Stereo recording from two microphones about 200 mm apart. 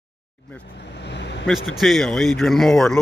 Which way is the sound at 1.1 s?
60° left (ahead or behind).